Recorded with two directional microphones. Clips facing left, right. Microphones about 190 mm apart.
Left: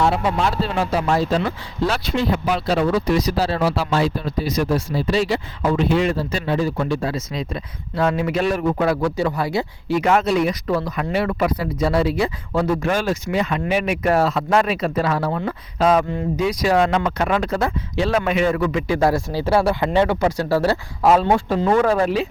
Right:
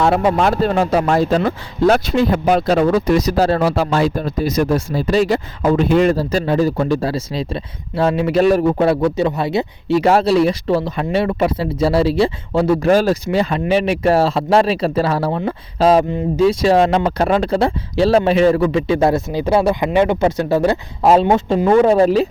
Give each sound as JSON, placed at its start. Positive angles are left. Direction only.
{"t": 0.0, "sound": "speech", "side_deg": -55}
{"t": 10.0, "sound": "speech", "side_deg": -35}